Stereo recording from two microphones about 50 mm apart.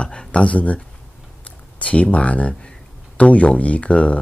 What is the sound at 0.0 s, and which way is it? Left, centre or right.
Speech, left.